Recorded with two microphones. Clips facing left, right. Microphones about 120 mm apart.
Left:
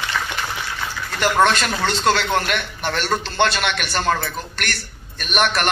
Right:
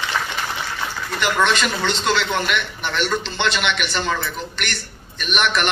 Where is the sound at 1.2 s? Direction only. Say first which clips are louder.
Left 3 dB; 45° left (ahead or behind).